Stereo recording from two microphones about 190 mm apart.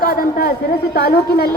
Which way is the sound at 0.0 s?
50° left (ahead or behind).